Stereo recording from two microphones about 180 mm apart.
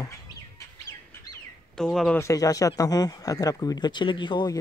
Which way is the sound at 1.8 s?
5° left (ahead or behind).